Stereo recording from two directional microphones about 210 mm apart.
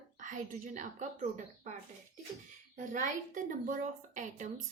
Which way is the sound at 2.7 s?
40° right (ahead or behind).